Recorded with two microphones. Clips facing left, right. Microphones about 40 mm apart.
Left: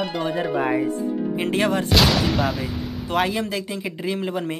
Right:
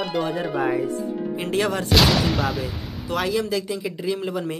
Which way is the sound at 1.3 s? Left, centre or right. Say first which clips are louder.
Left 1 dB; left.